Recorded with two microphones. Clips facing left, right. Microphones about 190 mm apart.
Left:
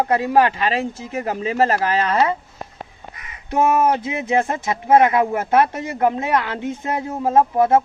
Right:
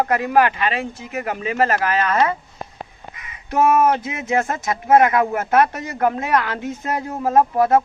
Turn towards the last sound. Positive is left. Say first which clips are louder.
# even
turn(degrees=20)  # may be behind; listen again after turning